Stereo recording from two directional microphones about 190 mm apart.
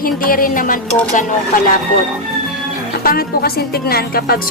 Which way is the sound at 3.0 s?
50° left (ahead or behind).